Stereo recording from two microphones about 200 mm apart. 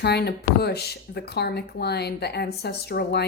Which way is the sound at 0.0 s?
55° left (ahead or behind).